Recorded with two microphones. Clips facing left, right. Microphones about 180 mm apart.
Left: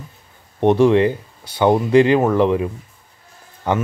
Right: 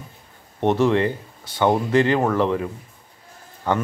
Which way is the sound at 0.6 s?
15° left (ahead or behind).